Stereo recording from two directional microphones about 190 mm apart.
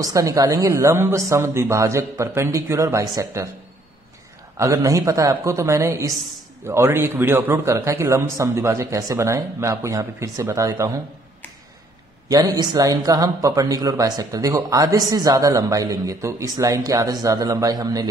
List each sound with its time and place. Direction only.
0.0 s a man's voice: 15° right (ahead or behind)
4.6 s a man's voice: 15° right (ahead or behind)
12.3 s speech: 20° right (ahead or behind)